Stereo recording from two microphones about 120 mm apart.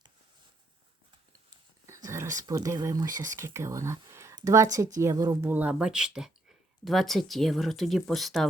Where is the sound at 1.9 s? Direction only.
25° right (ahead or behind).